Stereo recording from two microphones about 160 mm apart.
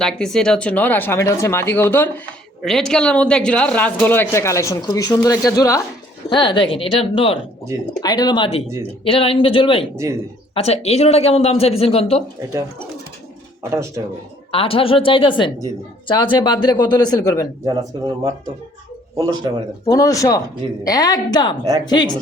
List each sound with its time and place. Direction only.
0.0 s a man's voice: 5° left (ahead or behind); by 7.3 s 35° left (ahead or behind)
7.9 s speech: 25° left (ahead or behind)
13.6 s speech: 15° right (ahead or behind)
14.5 s speech: 35° left (ahead or behind)
17.7 s speech: 20° right (ahead or behind)
19.9 s speech: 20° left (ahead or behind)
21.6 s speech: 20° right (ahead or behind)
21.8 s speech: 25° left (ahead or behind)